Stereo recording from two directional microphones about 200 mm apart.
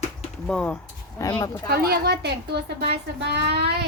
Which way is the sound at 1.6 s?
50° right (ahead or behind).